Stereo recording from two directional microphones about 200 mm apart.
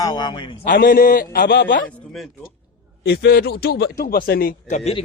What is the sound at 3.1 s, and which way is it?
A man's voice, 50° left (ahead or behind).